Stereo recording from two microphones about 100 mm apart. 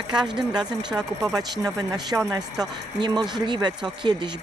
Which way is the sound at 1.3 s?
40° right (ahead or behind).